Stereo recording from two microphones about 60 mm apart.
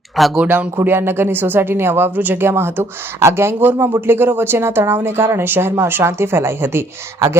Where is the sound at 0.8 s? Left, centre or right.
Right.